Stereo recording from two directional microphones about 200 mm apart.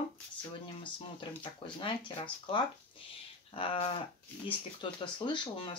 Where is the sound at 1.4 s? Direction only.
25° left (ahead or behind).